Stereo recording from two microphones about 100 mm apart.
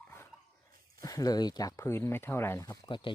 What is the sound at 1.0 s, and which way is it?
Speech, 35° left (ahead or behind).